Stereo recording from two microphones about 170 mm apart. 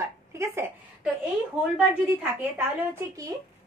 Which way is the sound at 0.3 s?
15° right (ahead or behind).